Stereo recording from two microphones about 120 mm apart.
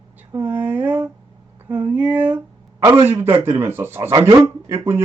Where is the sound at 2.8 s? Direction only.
20° right (ahead or behind).